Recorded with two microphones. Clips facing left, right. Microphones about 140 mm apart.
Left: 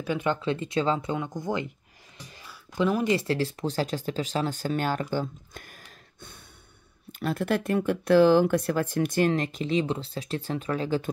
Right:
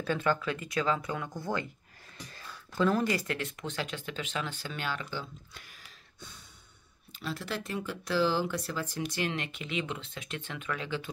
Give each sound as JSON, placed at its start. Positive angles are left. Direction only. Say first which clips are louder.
{"t": 0.0, "sound": "speech", "louder": "left 2 dB", "side_deg": 15}
{"t": 2.3, "sound": "a sound", "louder": "left 3 dB", "side_deg": 15}
{"t": 3.2, "sound": "speech", "louder": "left 8 dB", "side_deg": 30}